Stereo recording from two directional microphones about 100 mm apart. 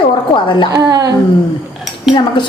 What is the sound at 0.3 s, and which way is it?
Speech, 55° left (ahead or behind).